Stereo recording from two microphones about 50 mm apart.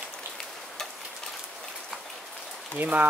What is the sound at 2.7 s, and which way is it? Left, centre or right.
Speech, right.